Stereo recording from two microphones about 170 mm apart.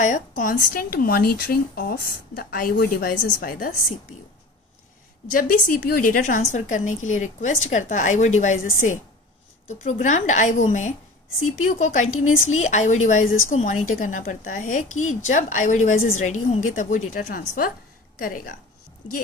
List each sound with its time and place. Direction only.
0.0 s speech: 50° left (ahead or behind)
5.3 s a woman's voice: 55° left (ahead or behind)